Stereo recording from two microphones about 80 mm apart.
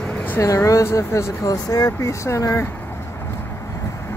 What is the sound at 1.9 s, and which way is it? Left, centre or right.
Speech, left.